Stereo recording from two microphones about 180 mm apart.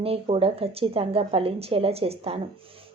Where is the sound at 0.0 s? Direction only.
30° right (ahead or behind).